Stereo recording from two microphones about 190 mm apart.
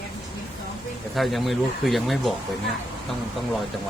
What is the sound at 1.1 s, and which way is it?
Speech, centre (ahead or behind).